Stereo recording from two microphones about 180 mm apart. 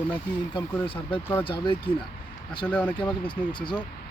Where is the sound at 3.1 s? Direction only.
25° left (ahead or behind).